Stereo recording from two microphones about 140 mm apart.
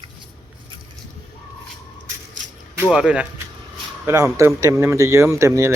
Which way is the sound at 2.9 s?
5° right (ahead or behind).